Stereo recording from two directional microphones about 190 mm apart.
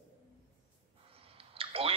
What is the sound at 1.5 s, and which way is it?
Clicking, 30° right (ahead or behind).